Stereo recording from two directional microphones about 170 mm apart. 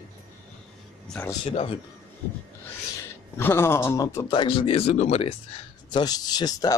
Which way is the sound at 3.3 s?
15° left (ahead or behind).